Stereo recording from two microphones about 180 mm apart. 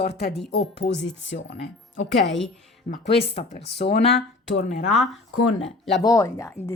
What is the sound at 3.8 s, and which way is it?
Speech, 70° left (ahead or behind).